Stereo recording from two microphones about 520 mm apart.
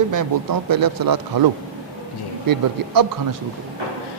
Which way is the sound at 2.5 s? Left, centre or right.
Right.